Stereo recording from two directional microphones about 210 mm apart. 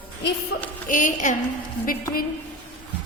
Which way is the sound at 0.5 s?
50° left (ahead or behind).